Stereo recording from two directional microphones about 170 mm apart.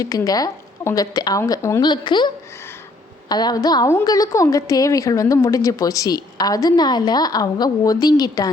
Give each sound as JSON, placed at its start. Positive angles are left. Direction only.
{"t": 0.0, "sound": "a woman's voice", "side_deg": 20}